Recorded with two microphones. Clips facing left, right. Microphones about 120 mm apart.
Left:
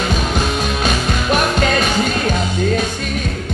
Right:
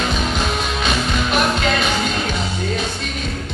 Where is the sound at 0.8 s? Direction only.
45° left (ahead or behind).